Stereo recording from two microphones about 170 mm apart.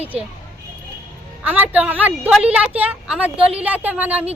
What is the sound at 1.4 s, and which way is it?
A woman's voice, 10° right (ahead or behind).